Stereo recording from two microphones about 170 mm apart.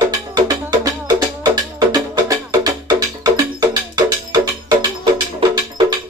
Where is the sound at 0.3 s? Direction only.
25° right (ahead or behind).